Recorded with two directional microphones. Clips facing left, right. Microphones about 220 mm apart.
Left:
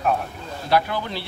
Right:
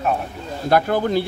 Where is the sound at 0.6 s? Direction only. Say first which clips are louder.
Right 5 dB; 50° right (ahead or behind).